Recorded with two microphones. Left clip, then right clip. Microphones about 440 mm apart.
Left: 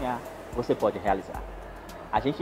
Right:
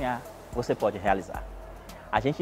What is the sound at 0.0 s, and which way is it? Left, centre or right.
Music, right.